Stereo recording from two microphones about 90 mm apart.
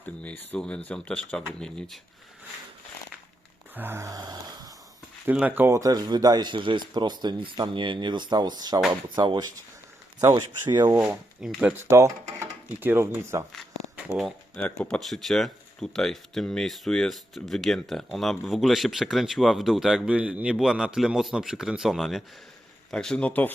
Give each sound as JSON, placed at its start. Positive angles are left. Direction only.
{"t": 0.0, "sound": "speech", "side_deg": 15}
{"t": 3.8, "sound": "speech", "side_deg": -25}
{"t": 4.1, "sound": "snoring", "side_deg": -45}
{"t": 5.2, "sound": "speech", "side_deg": -15}
{"t": 5.6, "sound": "speech", "side_deg": -40}
{"t": 9.0, "sound": "snoring", "side_deg": -55}
{"t": 10.7, "sound": "speech", "side_deg": -55}
{"t": 11.0, "sound": "speech", "side_deg": -10}
{"t": 11.8, "sound": "speech", "side_deg": -30}
{"t": 14.5, "sound": "speech", "side_deg": 10}